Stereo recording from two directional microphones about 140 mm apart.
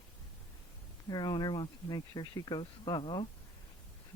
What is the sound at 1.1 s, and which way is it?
Speech, 30° left (ahead or behind).